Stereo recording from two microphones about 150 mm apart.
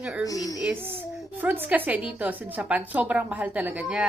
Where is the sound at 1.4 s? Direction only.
10° right (ahead or behind).